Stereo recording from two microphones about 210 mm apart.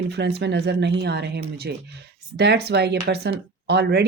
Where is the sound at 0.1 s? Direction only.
50° right (ahead or behind).